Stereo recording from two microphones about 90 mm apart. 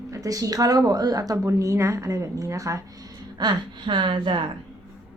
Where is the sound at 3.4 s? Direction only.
60° right (ahead or behind).